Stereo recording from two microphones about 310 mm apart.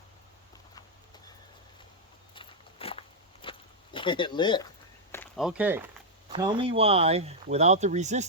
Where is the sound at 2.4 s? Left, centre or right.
Centre.